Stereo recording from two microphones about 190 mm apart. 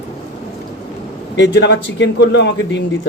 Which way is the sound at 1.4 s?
65° left (ahead or behind).